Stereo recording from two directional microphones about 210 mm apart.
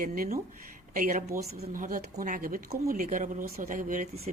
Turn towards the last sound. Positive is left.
turn(degrees=-40)  # may be behind; listen again after turning